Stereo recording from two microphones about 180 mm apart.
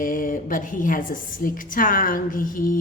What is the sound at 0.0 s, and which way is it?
A woman's voice, 50° left (ahead or behind).